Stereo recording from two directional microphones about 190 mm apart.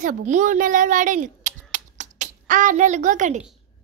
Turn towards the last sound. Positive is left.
turn(degrees=-40)  # may be behind; listen again after turning